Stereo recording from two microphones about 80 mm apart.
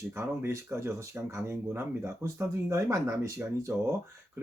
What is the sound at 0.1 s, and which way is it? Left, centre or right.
Speech, right.